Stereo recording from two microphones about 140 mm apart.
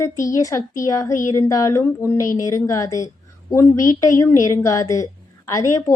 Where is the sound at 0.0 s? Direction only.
25° left (ahead or behind).